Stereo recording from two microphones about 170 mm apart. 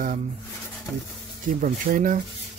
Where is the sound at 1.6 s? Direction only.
55° right (ahead or behind).